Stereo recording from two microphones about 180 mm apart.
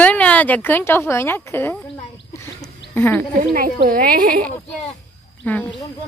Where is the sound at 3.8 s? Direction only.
55° right (ahead or behind).